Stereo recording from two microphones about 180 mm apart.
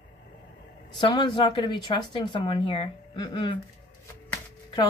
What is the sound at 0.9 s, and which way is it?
A woman's voice, 25° left (ahead or behind).